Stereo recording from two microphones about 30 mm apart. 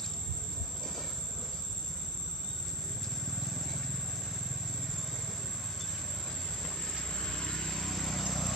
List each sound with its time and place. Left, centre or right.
7.0 s vehicle: left
7.5 s vehicle: centre